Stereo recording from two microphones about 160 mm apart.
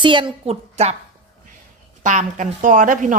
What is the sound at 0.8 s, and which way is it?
Speech, 45° right (ahead or behind).